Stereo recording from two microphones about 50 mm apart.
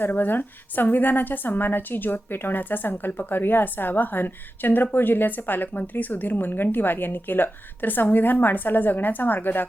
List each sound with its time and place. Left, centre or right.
0.0 s speech: left